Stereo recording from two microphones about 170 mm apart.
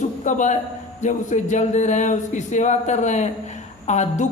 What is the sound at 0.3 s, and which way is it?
A man's voice, 45° left (ahead or behind).